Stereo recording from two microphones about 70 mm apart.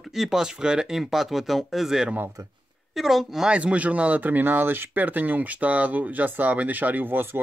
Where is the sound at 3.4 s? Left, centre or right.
Centre.